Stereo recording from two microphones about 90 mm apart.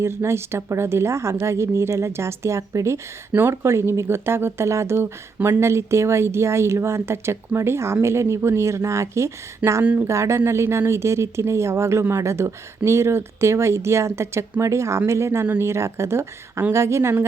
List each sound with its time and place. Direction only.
0.0 s speech: 30° right (ahead or behind)
9.8 s speech: 20° right (ahead or behind)
10.1 s speech: 35° right (ahead or behind)